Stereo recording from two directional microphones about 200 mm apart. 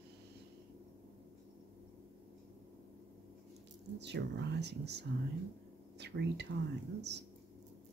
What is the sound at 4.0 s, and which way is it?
Speech, 60° right (ahead or behind).